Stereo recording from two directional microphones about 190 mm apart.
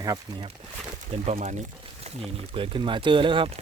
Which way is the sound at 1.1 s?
35° right (ahead or behind).